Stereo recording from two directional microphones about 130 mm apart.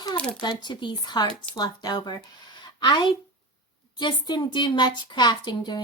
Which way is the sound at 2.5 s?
35° left (ahead or behind).